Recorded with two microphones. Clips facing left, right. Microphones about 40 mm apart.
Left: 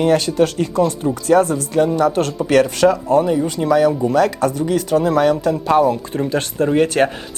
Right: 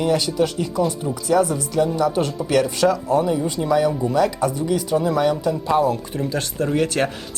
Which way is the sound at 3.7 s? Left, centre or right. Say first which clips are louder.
Left 4 dB; centre.